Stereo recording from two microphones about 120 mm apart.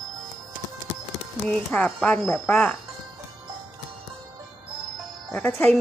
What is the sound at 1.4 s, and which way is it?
A woman's voice, 10° left (ahead or behind).